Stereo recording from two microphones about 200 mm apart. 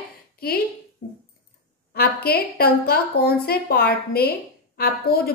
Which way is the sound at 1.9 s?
50° left (ahead or behind).